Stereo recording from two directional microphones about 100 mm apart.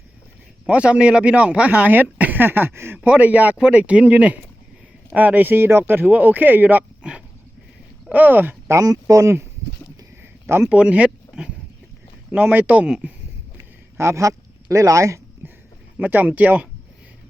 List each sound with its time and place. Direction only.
0.6 s speech: 10° right (ahead or behind)
8.8 s speech: 35° right (ahead or behind)
10.7 s speech: 10° right (ahead or behind)
13.9 s speech: 30° right (ahead or behind)
16.0 s speech: 15° right (ahead or behind)